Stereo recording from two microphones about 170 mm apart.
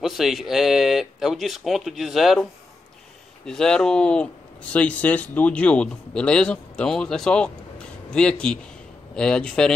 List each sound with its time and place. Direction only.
0.0 s speech: centre (ahead or behind)
3.4 s speech: 5° left (ahead or behind)